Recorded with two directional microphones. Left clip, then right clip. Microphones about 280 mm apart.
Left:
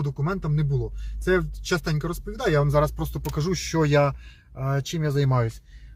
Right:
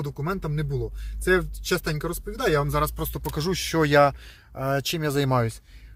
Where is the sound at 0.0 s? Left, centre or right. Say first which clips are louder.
Even; centre; by 5.6 s right.